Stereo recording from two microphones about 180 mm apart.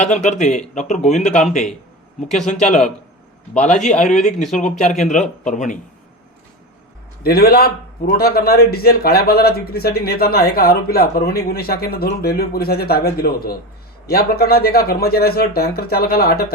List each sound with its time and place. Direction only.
0.0 s speech: 40° left (ahead or behind)
2.5 s a man's voice: 40° left (ahead or behind)
7.2 s a man's voice: 60° left (ahead or behind)